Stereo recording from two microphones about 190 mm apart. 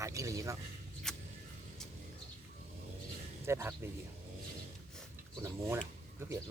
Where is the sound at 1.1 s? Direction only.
5° left (ahead or behind).